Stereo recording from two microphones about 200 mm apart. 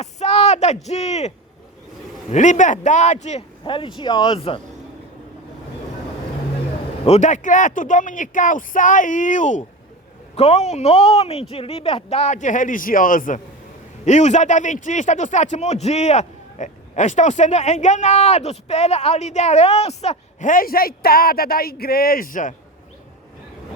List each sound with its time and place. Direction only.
0.0 s speech: 35° left (ahead or behind)
2.3 s a man's voice: 40° left (ahead or behind)
7.0 s a man's voice: 35° left (ahead or behind)